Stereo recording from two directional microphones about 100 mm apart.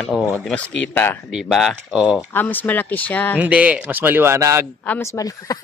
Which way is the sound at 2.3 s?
20° left (ahead or behind).